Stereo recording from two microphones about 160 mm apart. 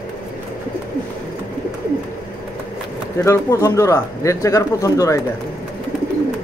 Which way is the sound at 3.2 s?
15° left (ahead or behind).